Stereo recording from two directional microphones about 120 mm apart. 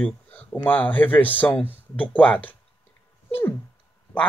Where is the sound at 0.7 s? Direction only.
15° left (ahead or behind).